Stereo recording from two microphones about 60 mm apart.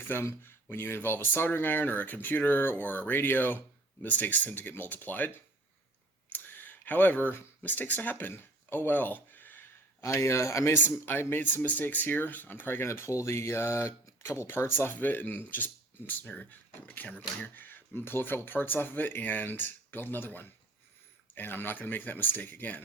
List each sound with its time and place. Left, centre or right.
0.1 s speech: left
6.3 s a sound: left
10.0 s speech: left
10.8 s speech: left
12.9 s speech: left